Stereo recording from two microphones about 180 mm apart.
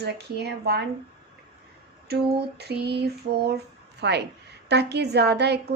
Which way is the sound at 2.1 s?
65° right (ahead or behind).